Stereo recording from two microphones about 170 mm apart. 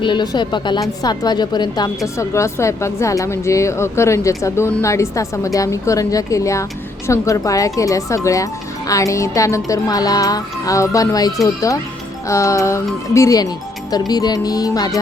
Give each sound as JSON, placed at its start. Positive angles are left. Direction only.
{"t": 0.0, "sound": "a woman's voice", "side_deg": 25}
{"t": 12.3, "sound": "a woman's voice", "side_deg": 20}